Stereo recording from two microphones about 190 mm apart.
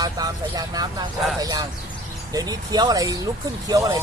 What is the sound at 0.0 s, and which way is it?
Speech, 20° right (ahead or behind).